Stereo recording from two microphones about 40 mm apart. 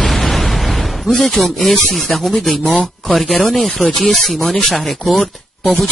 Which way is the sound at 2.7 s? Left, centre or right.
Left.